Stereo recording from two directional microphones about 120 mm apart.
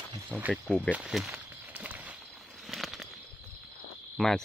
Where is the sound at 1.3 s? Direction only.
15° right (ahead or behind).